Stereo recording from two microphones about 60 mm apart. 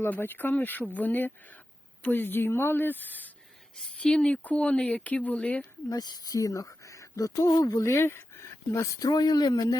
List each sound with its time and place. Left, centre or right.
0.2 s a woman's voice: left
3.8 s speech: centre
5.9 s speech: left
9.0 s speech: left